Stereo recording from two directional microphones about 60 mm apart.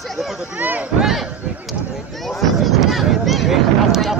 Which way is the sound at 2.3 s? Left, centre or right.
Centre.